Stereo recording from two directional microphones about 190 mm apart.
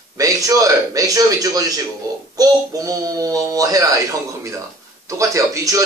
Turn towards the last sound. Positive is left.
turn(degrees=-15)  # may be behind; listen again after turning